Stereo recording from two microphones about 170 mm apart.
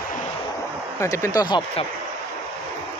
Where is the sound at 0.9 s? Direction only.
15° left (ahead or behind).